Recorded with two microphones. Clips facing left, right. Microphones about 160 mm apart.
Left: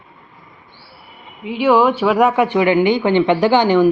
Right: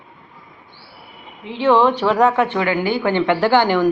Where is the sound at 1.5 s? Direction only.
10° left (ahead or behind).